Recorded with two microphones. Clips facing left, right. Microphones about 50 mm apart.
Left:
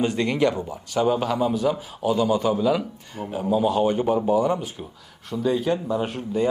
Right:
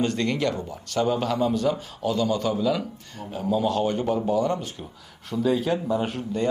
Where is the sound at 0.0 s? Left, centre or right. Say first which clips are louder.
Left 3 dB; centre.